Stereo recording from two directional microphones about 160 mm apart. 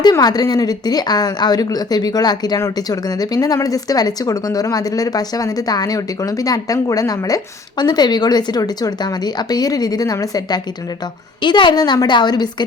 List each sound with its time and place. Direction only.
0.0 s speech: 25° left (ahead or behind)